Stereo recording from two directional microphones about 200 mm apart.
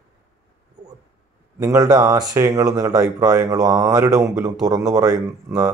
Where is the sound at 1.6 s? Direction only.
20° right (ahead or behind).